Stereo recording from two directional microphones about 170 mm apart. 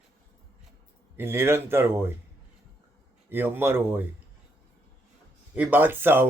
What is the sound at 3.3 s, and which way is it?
Speech, 15° right (ahead or behind).